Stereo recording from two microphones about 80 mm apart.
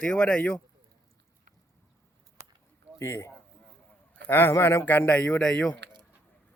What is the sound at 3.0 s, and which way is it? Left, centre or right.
A man's voice, left.